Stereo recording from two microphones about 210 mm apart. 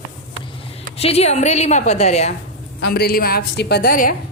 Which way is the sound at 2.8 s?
50° left (ahead or behind).